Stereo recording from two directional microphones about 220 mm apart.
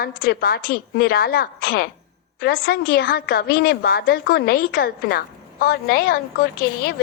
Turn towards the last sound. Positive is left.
turn(degrees=45)  # may be behind; listen again after turning